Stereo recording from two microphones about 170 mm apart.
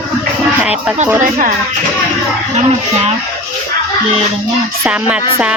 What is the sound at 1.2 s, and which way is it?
Speech, 55° right (ahead or behind).